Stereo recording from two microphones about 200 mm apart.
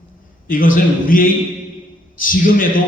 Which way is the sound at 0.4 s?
45° left (ahead or behind).